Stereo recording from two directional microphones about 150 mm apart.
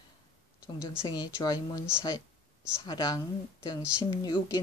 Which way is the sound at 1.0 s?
25° left (ahead or behind).